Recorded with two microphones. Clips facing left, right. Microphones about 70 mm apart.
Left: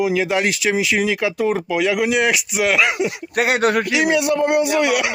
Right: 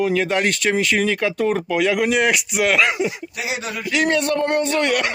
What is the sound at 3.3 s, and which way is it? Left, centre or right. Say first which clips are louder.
Speech: left 10 dB; left.